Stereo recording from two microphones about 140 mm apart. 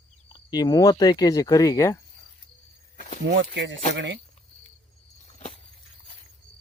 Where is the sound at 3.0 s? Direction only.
70° left (ahead or behind).